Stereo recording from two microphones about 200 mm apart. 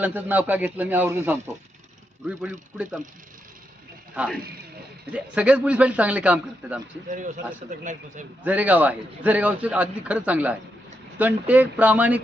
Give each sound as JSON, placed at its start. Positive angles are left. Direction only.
{"t": 0.0, "sound": "a man's voice", "side_deg": -10}
{"t": 4.1, "sound": "a man's voice", "side_deg": -5}
{"t": 7.1, "sound": "speech", "side_deg": -40}
{"t": 8.4, "sound": "a man's voice", "side_deg": -10}